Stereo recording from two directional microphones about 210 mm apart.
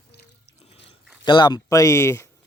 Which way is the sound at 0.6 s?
25° left (ahead or behind).